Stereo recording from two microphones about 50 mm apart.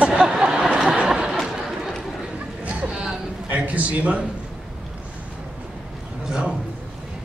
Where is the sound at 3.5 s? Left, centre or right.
Right.